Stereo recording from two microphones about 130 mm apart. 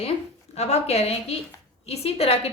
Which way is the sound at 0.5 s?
55° left (ahead or behind).